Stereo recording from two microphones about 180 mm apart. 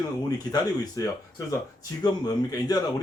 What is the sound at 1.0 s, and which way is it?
Speech, 20° left (ahead or behind).